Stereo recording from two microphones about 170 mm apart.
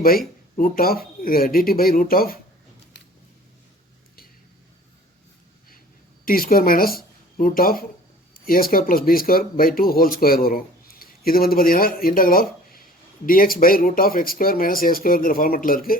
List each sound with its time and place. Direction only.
0.5 s speech: 55° left (ahead or behind)
6.2 s speech: 60° left (ahead or behind)